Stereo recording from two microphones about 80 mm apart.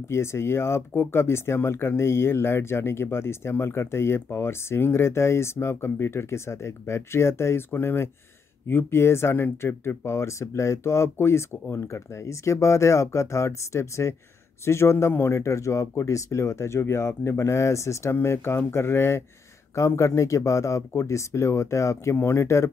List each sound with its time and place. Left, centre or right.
0.1 s speech: left